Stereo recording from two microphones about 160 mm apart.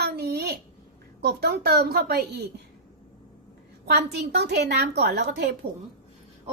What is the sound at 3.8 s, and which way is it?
A woman's voice, 90° right.